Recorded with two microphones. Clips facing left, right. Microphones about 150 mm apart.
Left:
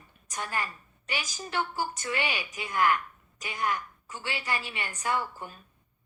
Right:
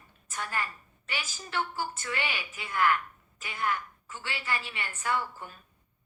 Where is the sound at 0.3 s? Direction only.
15° left (ahead or behind).